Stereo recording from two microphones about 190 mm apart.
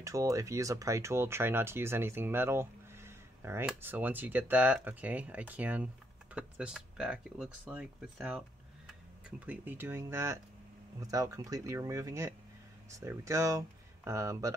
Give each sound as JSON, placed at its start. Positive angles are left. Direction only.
{"t": 0.0, "sound": "speech", "side_deg": -15}